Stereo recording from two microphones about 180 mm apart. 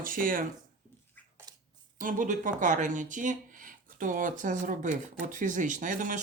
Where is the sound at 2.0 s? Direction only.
45° right (ahead or behind).